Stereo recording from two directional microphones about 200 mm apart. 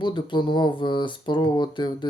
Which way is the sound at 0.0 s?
25° left (ahead or behind).